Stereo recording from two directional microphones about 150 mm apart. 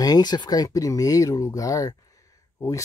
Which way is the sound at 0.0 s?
25° left (ahead or behind).